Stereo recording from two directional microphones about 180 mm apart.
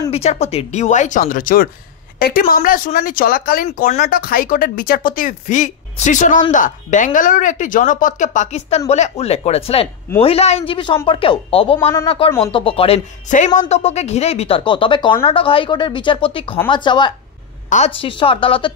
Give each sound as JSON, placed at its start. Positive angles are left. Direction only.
{"t": 0.1, "sound": "a woman's voice", "side_deg": 35}
{"t": 17.6, "sound": "speech", "side_deg": 40}